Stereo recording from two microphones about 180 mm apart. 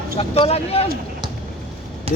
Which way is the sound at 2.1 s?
35° right (ahead or behind).